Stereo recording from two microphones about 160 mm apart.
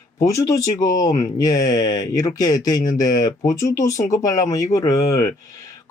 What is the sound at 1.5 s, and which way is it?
Speech, 20° left (ahead or behind).